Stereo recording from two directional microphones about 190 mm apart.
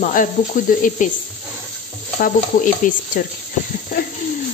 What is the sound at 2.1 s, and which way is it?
Speech, 45° left (ahead or behind).